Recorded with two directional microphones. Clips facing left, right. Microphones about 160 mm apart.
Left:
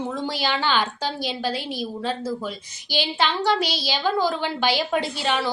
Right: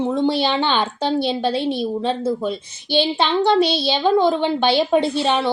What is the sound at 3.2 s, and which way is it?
A woman's voice, 25° right (ahead or behind).